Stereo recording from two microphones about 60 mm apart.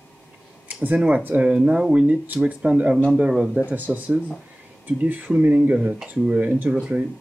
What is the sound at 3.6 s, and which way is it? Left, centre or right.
Speech, right.